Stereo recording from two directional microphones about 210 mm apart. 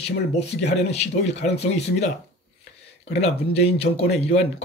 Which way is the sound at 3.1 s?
30° left (ahead or behind).